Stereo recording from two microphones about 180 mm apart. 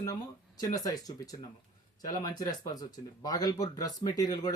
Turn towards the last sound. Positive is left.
turn(degrees=20)  # may be behind; listen again after turning